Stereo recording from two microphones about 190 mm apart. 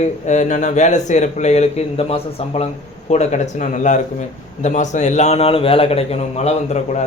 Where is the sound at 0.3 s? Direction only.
40° left (ahead or behind).